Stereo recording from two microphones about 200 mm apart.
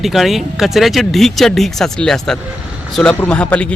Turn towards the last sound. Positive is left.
turn(degrees=5)  # may be behind; listen again after turning